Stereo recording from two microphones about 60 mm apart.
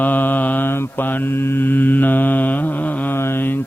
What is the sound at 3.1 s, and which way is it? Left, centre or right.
Mantra, left.